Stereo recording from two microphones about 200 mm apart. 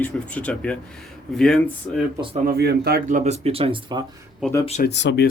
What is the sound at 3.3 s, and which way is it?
Speech, 30° right (ahead or behind).